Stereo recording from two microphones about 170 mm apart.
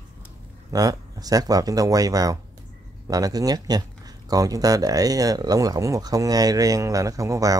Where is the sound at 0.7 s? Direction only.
20° right (ahead or behind).